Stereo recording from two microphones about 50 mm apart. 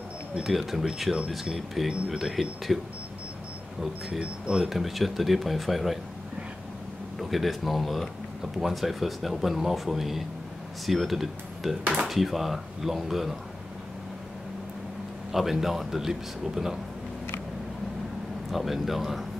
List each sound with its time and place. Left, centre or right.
0.4 s speech: centre
3.8 s speech: centre
7.2 s speech: centre
15.3 s speech: centre
18.5 s speech: centre